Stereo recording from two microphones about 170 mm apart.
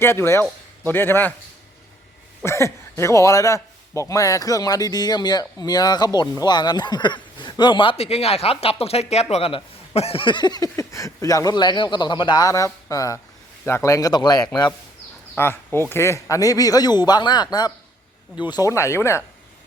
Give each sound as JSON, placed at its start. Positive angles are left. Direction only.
{"t": 0.0, "sound": "speech", "side_deg": 15}
{"t": 2.4, "sound": "a man's voice", "side_deg": 15}
{"t": 15.4, "sound": "a man's voice", "side_deg": 15}